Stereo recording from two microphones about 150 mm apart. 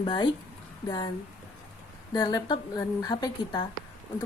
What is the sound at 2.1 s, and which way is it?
A woman's voice, 30° left (ahead or behind).